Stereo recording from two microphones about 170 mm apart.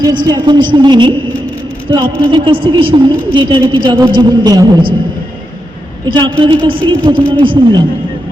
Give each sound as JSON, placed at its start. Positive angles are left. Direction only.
{"t": 0.0, "sound": "a woman's voice", "side_deg": -25}
{"t": 6.1, "sound": "a woman's voice", "side_deg": -30}